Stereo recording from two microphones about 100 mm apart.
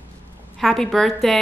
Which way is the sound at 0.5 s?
Centre (ahead or behind).